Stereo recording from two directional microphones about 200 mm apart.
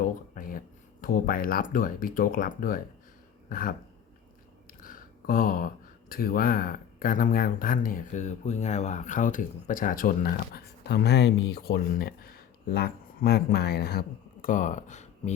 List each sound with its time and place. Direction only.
0.0 s a sound: 45° left (ahead or behind)
1.0 s speech: 45° left (ahead or behind)
4.8 s speech: 45° left (ahead or behind)
14.4 s speech: 40° left (ahead or behind)